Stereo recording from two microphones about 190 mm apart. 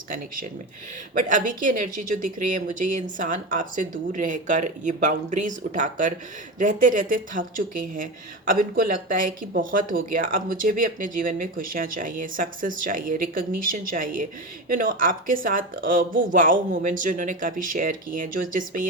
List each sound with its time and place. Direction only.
1.1 s speech: 45° right (ahead or behind)